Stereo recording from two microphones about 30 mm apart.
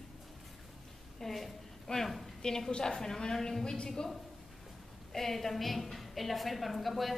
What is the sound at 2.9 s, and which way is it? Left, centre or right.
Speech, centre.